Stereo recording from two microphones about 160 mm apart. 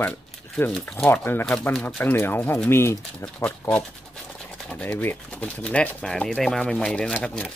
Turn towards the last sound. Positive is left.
turn(degrees=5)  # may be behind; listen again after turning